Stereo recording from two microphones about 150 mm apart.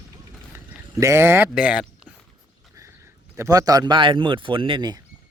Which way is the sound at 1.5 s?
5° right (ahead or behind).